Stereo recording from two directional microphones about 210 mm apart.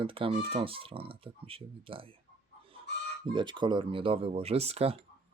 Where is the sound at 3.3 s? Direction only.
20° right (ahead or behind).